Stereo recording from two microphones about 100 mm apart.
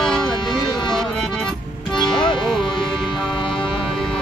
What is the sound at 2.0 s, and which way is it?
Music, 50° left (ahead or behind).